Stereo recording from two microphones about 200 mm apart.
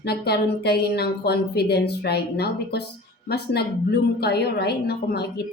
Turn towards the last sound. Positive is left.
turn(degrees=55)  # may be behind; listen again after turning